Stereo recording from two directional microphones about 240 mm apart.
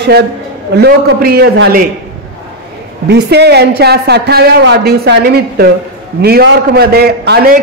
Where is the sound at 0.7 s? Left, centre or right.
Right.